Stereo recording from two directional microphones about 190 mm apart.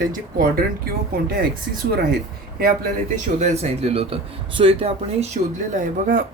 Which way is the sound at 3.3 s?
35° right (ahead or behind).